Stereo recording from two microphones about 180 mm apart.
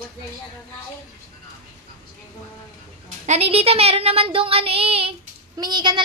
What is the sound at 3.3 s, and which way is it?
Speech, 35° right (ahead or behind).